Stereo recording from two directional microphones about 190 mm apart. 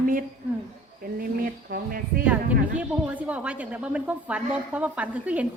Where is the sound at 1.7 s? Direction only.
50° right (ahead or behind).